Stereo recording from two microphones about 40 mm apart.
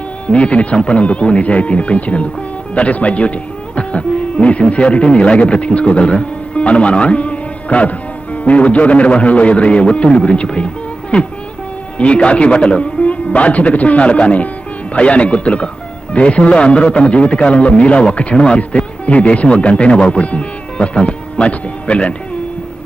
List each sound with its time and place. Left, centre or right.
0.3 s a man's voice: left